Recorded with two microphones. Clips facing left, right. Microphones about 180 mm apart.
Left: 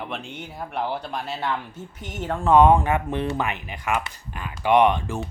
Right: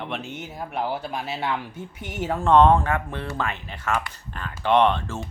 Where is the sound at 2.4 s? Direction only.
10° left (ahead or behind).